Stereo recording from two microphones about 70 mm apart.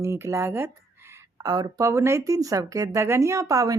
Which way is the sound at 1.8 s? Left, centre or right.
Right.